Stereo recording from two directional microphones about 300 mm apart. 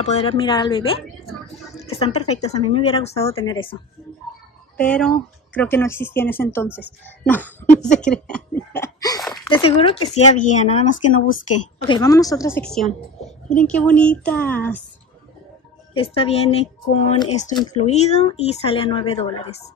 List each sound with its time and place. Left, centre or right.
0.0 s speech: centre
4.7 s speech: centre
7.2 s a sound: centre
9.5 s a woman's voice: centre
15.9 s speech: centre